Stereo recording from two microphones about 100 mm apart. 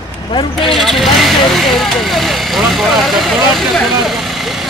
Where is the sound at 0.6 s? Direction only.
Centre (ahead or behind).